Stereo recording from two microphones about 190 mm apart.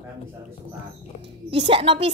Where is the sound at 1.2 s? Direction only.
30° right (ahead or behind).